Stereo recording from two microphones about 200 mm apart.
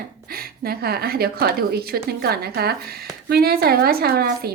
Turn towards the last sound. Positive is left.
turn(degrees=-50)  # may be behind; listen again after turning